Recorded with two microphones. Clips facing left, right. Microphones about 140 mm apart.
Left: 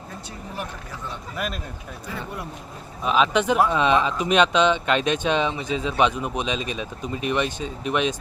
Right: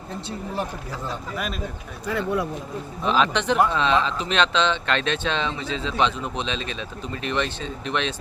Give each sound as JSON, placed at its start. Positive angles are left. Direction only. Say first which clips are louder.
{"t": 0.3, "sound": "speech", "louder": "right 5 dB", "side_deg": -30}
{"t": 1.4, "sound": "speech", "louder": "left 3 dB", "side_deg": 0}
{"t": 2.0, "sound": "speech", "louder": "right 10 dB", "side_deg": -70}
{"t": 3.0, "sound": "speech", "louder": "left 2 dB", "side_deg": 5}